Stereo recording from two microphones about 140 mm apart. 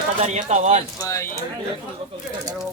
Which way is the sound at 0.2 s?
55° right (ahead or behind).